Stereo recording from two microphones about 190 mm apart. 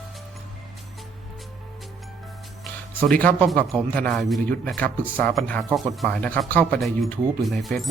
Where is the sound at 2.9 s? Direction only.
5° left (ahead or behind).